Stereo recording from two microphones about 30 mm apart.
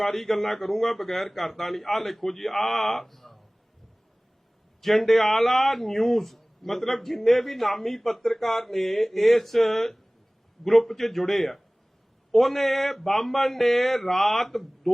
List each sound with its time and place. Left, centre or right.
0.0 s a man's voice: centre
4.8 s a man's voice: centre